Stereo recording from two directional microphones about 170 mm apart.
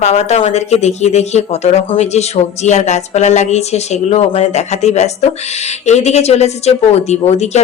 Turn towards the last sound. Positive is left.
turn(degrees=40)  # may be behind; listen again after turning